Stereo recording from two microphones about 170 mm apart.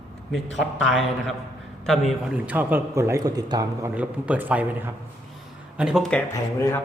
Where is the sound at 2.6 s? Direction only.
10° right (ahead or behind).